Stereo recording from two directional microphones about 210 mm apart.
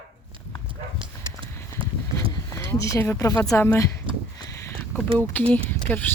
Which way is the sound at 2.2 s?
15° left (ahead or behind).